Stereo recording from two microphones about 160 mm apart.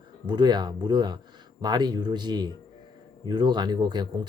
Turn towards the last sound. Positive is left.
turn(degrees=-25)  # may be behind; listen again after turning